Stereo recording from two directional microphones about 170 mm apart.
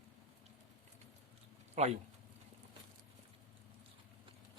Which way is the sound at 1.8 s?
40° right (ahead or behind).